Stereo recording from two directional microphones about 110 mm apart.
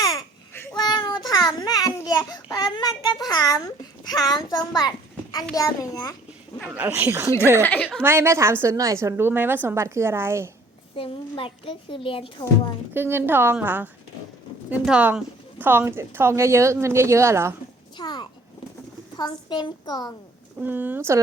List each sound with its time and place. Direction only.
0.8 s child singing: 40° left (ahead or behind)
1.3 s a sound: 40° left (ahead or behind)
2.0 s a child's voice: 35° left (ahead or behind)
6.7 s speech: 15° right (ahead or behind)
7.6 s a woman's voice: 15° left (ahead or behind)
8.0 s a woman's voice: 20° right (ahead or behind)
10.9 s a woman's voice: 55° left (ahead or behind)
12.9 s a woman's voice: 20° right (ahead or behind)
17.9 s a child's voice: 40° left (ahead or behind)
20.6 s speech: 15° right (ahead or behind)